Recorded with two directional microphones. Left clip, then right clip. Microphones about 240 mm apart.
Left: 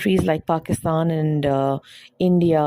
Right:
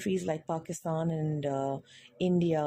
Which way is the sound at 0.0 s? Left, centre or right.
Left.